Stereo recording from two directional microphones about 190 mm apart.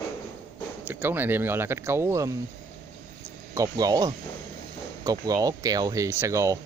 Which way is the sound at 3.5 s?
20° right (ahead or behind).